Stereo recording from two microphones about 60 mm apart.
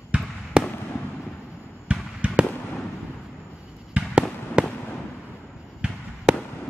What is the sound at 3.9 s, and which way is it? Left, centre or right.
Fireworks, centre.